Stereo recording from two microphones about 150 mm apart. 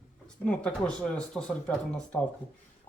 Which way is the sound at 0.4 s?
5° left (ahead or behind).